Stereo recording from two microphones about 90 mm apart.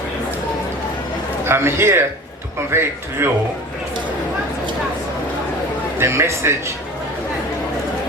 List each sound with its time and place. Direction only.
1.5 s a man's voice: 30° right (ahead or behind)
6.0 s a man's voice: 30° right (ahead or behind)